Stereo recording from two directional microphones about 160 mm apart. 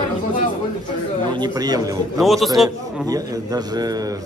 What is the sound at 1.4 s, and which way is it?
Speech, 25° right (ahead or behind).